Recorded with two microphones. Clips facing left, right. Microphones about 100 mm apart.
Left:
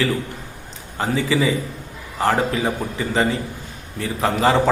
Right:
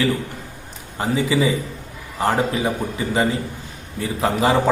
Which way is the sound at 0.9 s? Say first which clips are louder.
Right 1 dB; 20° right (ahead or behind).